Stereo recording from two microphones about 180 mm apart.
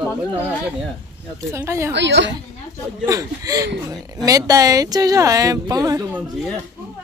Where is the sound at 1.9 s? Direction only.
80° right.